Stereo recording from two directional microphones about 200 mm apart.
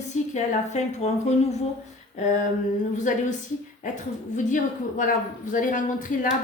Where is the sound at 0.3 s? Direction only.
35° left (ahead or behind).